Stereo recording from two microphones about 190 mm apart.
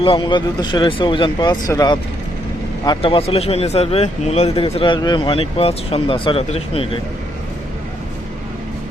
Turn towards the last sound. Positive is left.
turn(degrees=30)  # may be behind; listen again after turning